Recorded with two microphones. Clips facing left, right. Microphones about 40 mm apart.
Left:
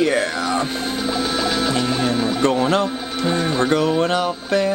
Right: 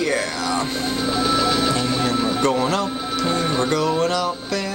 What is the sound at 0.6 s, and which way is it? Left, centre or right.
Speech, centre.